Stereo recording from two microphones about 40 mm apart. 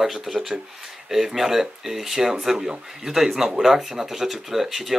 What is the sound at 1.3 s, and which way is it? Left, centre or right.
Speech, centre.